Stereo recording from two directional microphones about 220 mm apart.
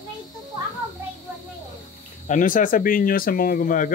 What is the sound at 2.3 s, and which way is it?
Speech, 35° left (ahead or behind).